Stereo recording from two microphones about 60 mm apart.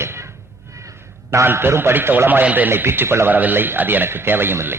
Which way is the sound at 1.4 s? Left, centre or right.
Right.